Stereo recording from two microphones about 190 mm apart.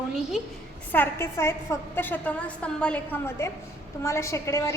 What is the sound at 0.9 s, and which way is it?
A woman's voice, 10° left (ahead or behind).